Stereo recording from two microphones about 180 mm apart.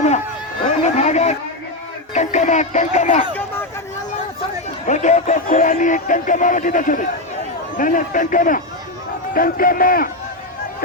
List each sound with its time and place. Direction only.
0.9 s chatter: 40° left (ahead or behind)
2.1 s speech: 40° left (ahead or behind)
4.9 s speech: 40° left (ahead or behind)